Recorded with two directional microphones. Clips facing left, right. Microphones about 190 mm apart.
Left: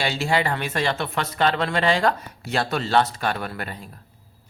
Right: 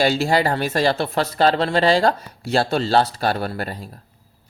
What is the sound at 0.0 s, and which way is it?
Speech, 40° right (ahead or behind).